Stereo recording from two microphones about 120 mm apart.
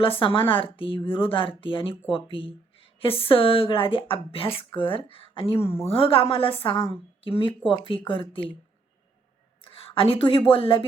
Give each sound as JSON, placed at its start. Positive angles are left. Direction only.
{"t": 0.0, "sound": "speech", "side_deg": 50}
{"t": 9.6, "sound": "a woman's voice", "side_deg": 50}